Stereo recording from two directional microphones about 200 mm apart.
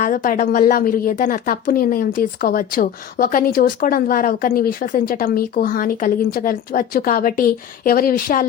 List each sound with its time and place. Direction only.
0.0 s a woman's voice: 45° left (ahead or behind)